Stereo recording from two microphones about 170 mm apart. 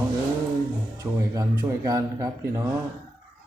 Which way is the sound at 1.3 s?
20° right (ahead or behind).